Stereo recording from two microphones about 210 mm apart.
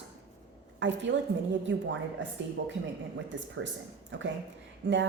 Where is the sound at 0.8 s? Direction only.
60° right (ahead or behind).